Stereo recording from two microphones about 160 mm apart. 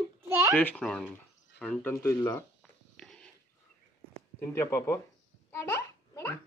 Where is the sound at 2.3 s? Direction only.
5° left (ahead or behind).